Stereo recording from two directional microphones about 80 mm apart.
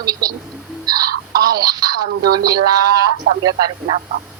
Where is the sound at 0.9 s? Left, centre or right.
Right.